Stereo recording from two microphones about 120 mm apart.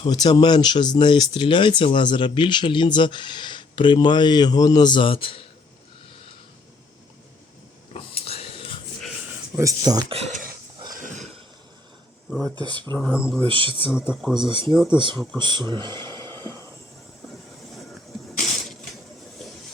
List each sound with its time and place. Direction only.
0.0 s speech: 35° left (ahead or behind)
7.9 s wheeze: 50° left (ahead or behind)
9.6 s speech: 30° right (ahead or behind)
10.1 s speech: 65° right (ahead or behind)
10.9 s a sound: 90° right
12.3 s speech: centre (ahead or behind)
12.5 s speech: 35° right (ahead or behind)
14.2 s speech: 5° right (ahead or behind)
14.4 s speech: 40° right (ahead or behind)